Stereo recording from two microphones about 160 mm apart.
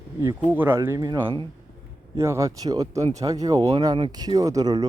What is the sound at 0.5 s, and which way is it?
Speech, 15° right (ahead or behind).